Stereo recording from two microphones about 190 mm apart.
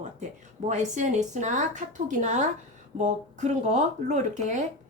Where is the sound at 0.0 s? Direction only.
40° right (ahead or behind).